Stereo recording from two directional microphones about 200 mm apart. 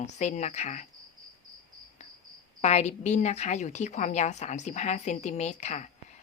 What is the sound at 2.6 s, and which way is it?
A woman's voice, 35° left (ahead or behind).